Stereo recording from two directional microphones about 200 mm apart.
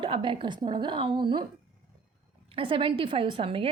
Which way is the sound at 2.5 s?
25° right (ahead or behind).